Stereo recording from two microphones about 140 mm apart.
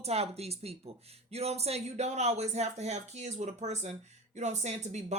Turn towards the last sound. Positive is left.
turn(degrees=-55)  # may be behind; listen again after turning